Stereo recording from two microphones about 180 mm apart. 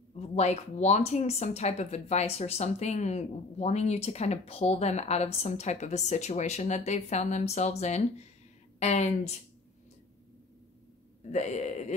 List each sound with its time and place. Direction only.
0.1 s speech: 40° left (ahead or behind)
11.3 s speech: 40° left (ahead or behind)